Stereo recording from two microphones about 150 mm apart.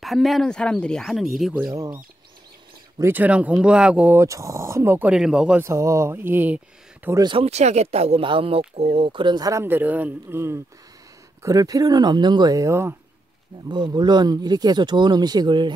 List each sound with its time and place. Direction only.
0.0 s speech: centre (ahead or behind)
3.0 s speech: 10° right (ahead or behind)
5.6 s speech: 20° right (ahead or behind)
7.1 s speech: 25° right (ahead or behind)
7.3 s speech: 45° right (ahead or behind); by 12.9 s 20° right (ahead or behind)
13.7 s speech: 30° right (ahead or behind)